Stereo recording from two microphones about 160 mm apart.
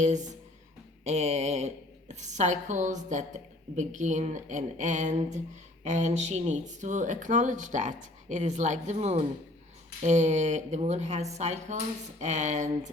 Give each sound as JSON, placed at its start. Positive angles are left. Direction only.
{"t": 0.0, "sound": "a woman's voice", "side_deg": -50}